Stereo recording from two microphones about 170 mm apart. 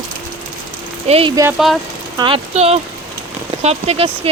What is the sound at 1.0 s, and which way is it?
Speech, 35° right (ahead or behind).